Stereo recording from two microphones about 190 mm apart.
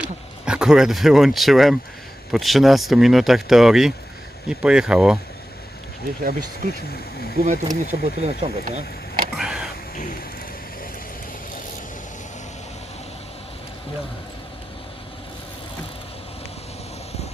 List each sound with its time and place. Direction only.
0.0 s speech: 5° right (ahead or behind)
7.3 s speech: 40° right (ahead or behind)
9.4 s vehicle: 5° right (ahead or behind)